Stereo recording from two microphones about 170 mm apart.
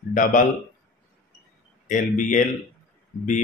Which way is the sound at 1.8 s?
50° left (ahead or behind).